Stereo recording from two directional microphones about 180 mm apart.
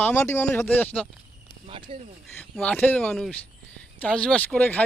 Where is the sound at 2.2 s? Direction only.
5° left (ahead or behind).